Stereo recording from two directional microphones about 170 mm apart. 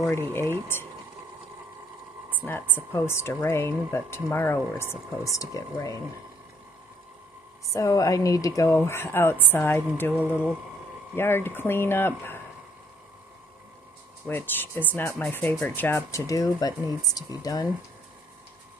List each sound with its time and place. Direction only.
0.1 s speech: 15° left (ahead or behind)
2.4 s speech: 10° left (ahead or behind)
7.7 s speech: 20° left (ahead or behind)
11.1 s speech: 15° left (ahead or behind)
14.2 s speech: 10° left (ahead or behind)